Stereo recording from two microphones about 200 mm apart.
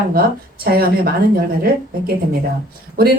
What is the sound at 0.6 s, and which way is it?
Speech, 50° right (ahead or behind).